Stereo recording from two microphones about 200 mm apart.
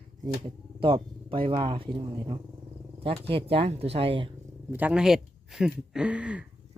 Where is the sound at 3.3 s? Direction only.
25° right (ahead or behind).